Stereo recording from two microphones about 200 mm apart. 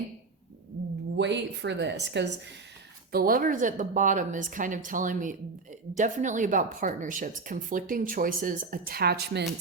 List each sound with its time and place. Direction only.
1.1 s speech: 60° right (ahead or behind)
3.1 s a woman's voice: 45° right (ahead or behind)